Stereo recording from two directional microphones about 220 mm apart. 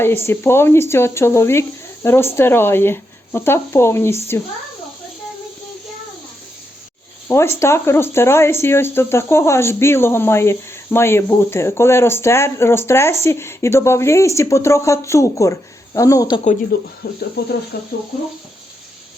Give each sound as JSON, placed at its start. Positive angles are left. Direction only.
{"t": 0.3, "sound": "speech", "side_deg": 10}
{"t": 7.3, "sound": "speech", "side_deg": 10}
{"t": 17.0, "sound": "speech", "side_deg": 45}